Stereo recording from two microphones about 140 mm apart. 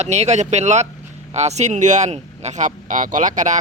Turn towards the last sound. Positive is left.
turn(degrees=-65)  # may be behind; listen again after turning